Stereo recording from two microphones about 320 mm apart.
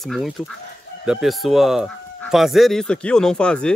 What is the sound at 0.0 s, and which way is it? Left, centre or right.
Speech, centre.